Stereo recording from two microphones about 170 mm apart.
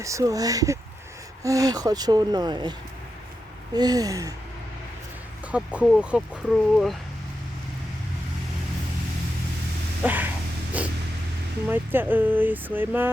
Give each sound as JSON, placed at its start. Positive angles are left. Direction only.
{"t": 0.0, "sound": "speech", "side_deg": -20}
{"t": 3.8, "sound": "speech", "side_deg": -20}
{"t": 5.5, "sound": "speech", "side_deg": -5}
{"t": 10.0, "sound": "a sound", "side_deg": -10}
{"t": 11.7, "sound": "speech", "side_deg": -10}